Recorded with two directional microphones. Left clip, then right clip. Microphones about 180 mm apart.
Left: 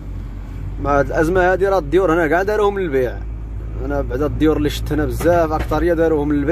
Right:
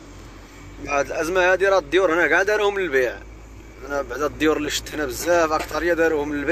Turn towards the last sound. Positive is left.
turn(degrees=15)  # may be behind; listen again after turning